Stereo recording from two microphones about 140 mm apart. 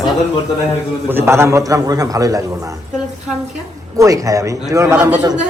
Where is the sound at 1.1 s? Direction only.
15° right (ahead or behind).